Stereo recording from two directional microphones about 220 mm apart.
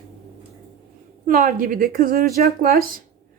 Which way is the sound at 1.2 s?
40° right (ahead or behind).